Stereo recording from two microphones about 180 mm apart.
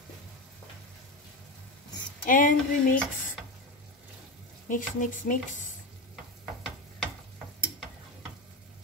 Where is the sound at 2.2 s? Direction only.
50° left (ahead or behind).